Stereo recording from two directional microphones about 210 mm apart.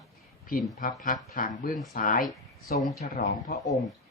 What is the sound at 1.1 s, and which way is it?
Speech, 40° left (ahead or behind).